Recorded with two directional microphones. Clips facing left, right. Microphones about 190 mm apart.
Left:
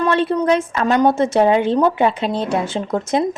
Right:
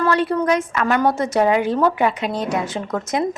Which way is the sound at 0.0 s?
25° left (ahead or behind).